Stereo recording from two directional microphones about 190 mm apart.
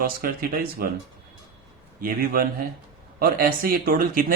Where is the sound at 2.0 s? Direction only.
50° right (ahead or behind).